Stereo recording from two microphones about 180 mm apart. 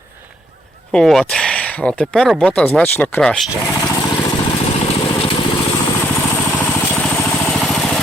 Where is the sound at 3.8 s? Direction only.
20° left (ahead or behind).